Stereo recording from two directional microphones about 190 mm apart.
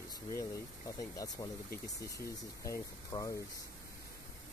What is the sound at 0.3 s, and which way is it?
Speech, 15° left (ahead or behind).